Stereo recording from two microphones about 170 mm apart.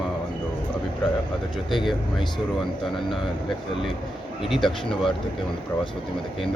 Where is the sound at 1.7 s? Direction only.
Centre (ahead or behind).